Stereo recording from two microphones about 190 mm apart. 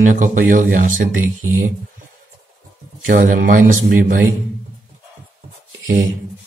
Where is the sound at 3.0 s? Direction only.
45° right (ahead or behind).